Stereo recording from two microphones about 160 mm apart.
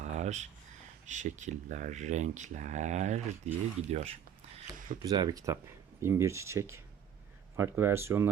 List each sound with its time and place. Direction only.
0.0 s a sound: 45° right (ahead or behind)
1.0 s speech: 50° right (ahead or behind)
5.0 s speech: 25° right (ahead or behind)